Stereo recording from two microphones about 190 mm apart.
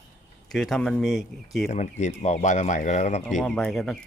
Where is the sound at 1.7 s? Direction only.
40° left (ahead or behind).